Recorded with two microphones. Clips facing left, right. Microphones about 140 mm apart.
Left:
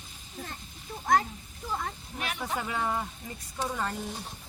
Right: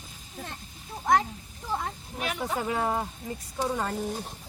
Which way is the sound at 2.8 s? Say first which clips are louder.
Right 3 dB; 20° right (ahead or behind).